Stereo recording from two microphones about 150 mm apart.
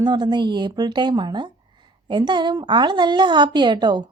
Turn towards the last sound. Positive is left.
turn(degrees=-30)  # may be behind; listen again after turning